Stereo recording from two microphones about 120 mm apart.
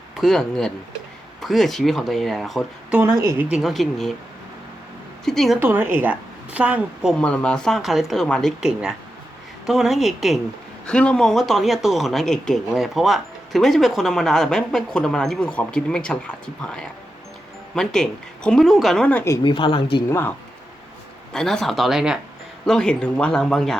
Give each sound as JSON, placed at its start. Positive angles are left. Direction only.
{"t": 0.2, "sound": "speech", "side_deg": 0}
{"t": 3.1, "sound": "speech", "side_deg": -25}
{"t": 3.5, "sound": "speech", "side_deg": 0}
{"t": 5.2, "sound": "speech", "side_deg": 5}
{"t": 5.5, "sound": "a woman's voice", "side_deg": -15}
{"t": 7.1, "sound": "speech", "side_deg": 10}
{"t": 10.8, "sound": "speech", "side_deg": 10}
{"t": 19.4, "sound": "a woman's voice", "side_deg": 45}
{"t": 20.1, "sound": "speech", "side_deg": 20}
{"t": 21.3, "sound": "speech", "side_deg": 5}
{"t": 22.6, "sound": "speech", "side_deg": 5}